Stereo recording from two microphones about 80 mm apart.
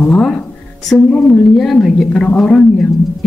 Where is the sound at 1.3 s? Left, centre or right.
Centre.